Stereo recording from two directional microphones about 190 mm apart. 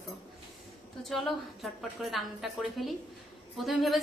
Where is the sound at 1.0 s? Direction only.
Centre (ahead or behind).